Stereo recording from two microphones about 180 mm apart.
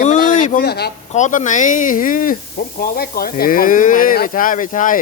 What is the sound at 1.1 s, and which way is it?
Speech, 40° left (ahead or behind).